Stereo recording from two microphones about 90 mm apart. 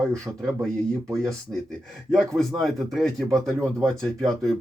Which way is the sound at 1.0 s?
35° right (ahead or behind).